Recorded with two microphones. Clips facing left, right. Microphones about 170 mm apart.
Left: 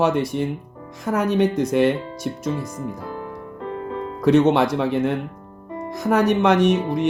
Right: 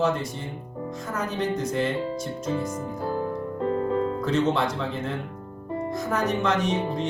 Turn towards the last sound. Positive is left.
turn(degrees=70)  # may be behind; listen again after turning